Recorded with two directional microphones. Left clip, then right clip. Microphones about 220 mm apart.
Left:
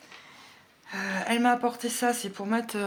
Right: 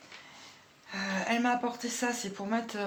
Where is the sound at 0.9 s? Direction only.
40° left (ahead or behind).